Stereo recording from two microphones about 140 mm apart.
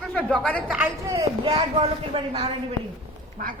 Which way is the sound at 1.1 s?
25° right (ahead or behind).